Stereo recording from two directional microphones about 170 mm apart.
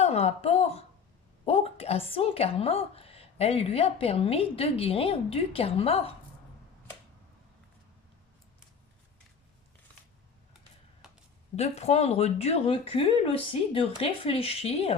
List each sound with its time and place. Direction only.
0.0 s a woman's voice: 40° left (ahead or behind)
11.5 s a woman's voice: 40° left (ahead or behind)